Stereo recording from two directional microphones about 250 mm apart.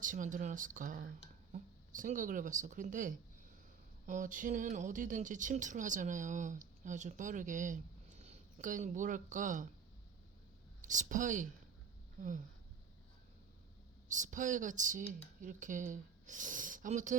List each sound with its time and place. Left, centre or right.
0.0 s speech: right
10.8 s speech: right
14.1 s speech: right